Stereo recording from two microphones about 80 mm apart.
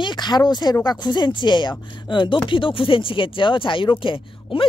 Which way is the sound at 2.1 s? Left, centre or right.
Left.